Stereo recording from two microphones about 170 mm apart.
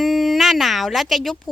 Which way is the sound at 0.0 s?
Centre (ahead or behind).